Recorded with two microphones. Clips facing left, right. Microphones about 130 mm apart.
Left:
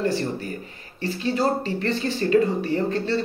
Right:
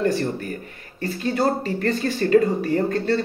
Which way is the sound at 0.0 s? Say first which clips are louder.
Right 2 dB; 50° right (ahead or behind).